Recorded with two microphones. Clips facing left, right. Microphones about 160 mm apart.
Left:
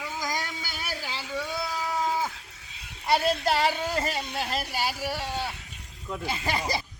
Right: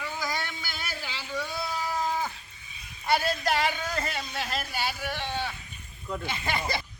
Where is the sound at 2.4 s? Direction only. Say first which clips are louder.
Left 2 dB; 90° left; by 3.4 s 70° left (ahead or behind).